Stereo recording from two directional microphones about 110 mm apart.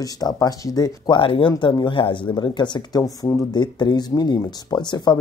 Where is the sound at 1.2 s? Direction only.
55° left (ahead or behind).